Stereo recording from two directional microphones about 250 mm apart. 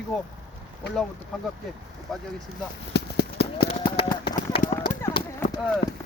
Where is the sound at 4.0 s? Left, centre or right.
Centre.